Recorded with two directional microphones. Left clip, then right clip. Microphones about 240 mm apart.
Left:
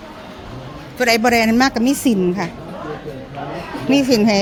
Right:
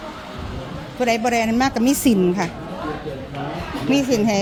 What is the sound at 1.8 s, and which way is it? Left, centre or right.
Speech, centre.